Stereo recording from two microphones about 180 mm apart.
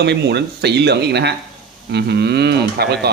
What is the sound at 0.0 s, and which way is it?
Speech, 70° right (ahead or behind).